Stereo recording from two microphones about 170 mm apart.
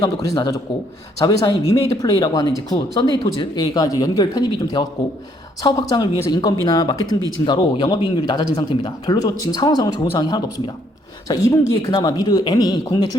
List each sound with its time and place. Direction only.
0.0 s speech: 25° left (ahead or behind)